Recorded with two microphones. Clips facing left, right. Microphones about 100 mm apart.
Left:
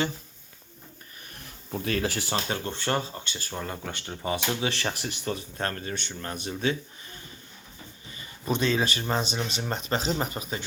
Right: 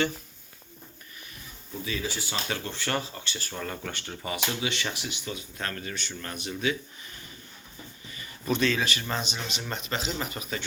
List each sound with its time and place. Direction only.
1.4 s speech: 65° left (ahead or behind)
2.5 s speech: 25° left (ahead or behind)